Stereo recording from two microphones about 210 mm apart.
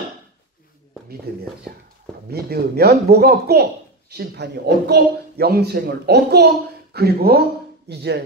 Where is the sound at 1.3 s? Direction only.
50° right (ahead or behind).